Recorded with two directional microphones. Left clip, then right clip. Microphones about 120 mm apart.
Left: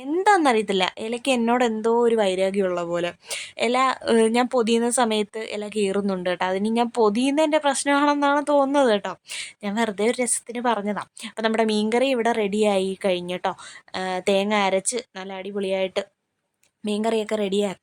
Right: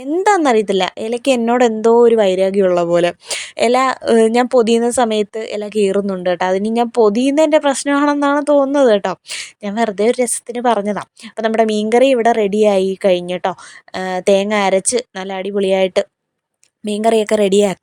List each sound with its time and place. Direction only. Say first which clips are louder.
0.2 s speech: right 5 dB; 40° right (ahead or behind)
9.0 s speech: right 9 dB; 50° right (ahead or behind)
11.3 s speech: right 7 dB; 30° right (ahead or behind)
14.9 s a woman's voice: right 11 dB; 60° right (ahead or behind)
16.8 s speech: right 9 dB; 40° right (ahead or behind)